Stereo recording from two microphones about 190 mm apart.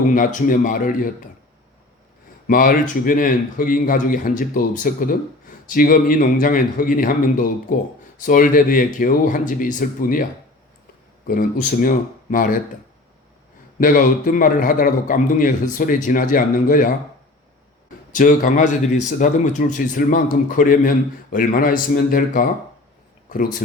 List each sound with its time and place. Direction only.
0.1 s a man's voice: 45° left (ahead or behind)
2.5 s a man's voice: 45° left (ahead or behind)
11.3 s a man's voice: 45° left (ahead or behind)
13.7 s a man's voice: 45° left (ahead or behind)
18.1 s a man's voice: 45° left (ahead or behind)